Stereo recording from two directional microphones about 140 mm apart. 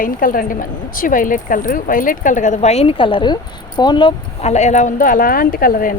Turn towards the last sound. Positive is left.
turn(degrees=90)